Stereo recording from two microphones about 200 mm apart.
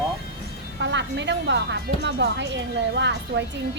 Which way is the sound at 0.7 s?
60° right (ahead or behind).